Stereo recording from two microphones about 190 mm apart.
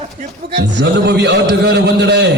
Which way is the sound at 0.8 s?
60° right (ahead or behind).